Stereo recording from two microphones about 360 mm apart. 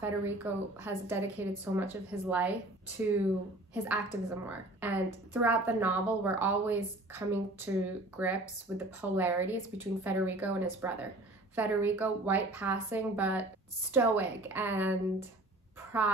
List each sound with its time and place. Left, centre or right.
0.0 s a woman's voice: centre
3.7 s a woman's voice: centre